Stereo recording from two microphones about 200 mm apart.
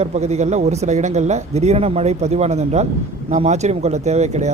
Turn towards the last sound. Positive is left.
turn(degrees=-35)  # may be behind; listen again after turning